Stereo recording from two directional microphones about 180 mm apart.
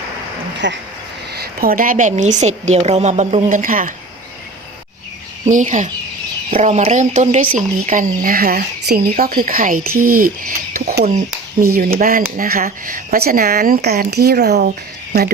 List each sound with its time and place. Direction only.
0.6 s speech: 80° right
1.3 s a woman's voice: 55° right (ahead or behind)
5.5 s a woman's voice: 45° right (ahead or behind); by 14.7 s 65° right (ahead or behind)